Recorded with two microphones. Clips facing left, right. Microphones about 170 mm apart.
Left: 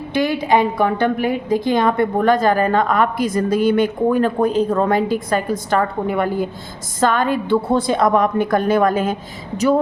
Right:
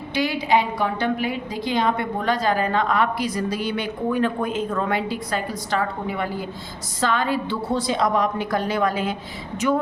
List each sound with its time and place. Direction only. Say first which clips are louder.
0.1 s a woman's voice: left 4 dB; 50° left (ahead or behind)